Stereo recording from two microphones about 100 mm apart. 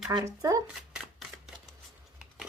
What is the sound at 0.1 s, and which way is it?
Speech, 40° right (ahead or behind).